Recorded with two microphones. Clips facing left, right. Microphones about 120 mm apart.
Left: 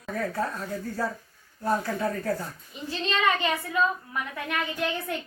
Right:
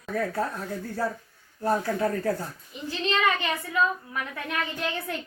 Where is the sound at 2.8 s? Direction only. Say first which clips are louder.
Even; 25° left (ahead or behind).